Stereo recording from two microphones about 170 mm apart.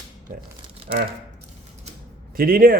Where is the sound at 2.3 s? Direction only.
55° right (ahead or behind).